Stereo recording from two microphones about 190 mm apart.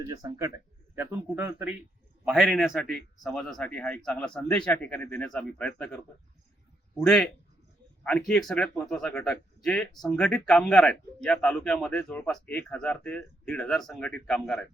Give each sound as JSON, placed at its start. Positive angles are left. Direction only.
{"t": 0.0, "sound": "a man's voice", "side_deg": -15}
{"t": 8.0, "sound": "a man's voice", "side_deg": 5}